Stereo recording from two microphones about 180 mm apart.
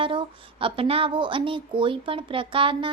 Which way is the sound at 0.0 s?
30° right (ahead or behind).